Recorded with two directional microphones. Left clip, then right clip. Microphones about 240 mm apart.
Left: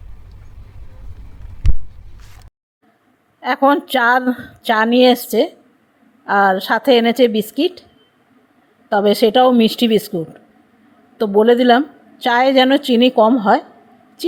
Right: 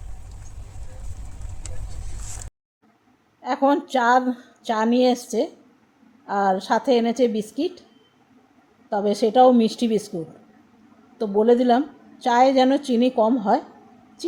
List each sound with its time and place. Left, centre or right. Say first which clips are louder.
3.4 s a woman's voice: left 6 dB; centre
8.9 s a woman's voice: left 8 dB; centre
11.2 s a woman's voice: left 6 dB; centre